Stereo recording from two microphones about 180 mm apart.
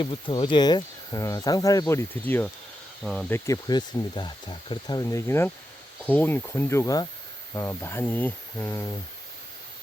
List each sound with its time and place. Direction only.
0.0 s speech: 25° left (ahead or behind); by 3.2 s centre (ahead or behind)
3.2 s speech: 15° left (ahead or behind)